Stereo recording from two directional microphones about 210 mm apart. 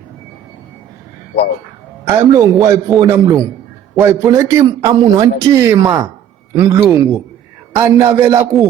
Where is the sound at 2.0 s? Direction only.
15° right (ahead or behind).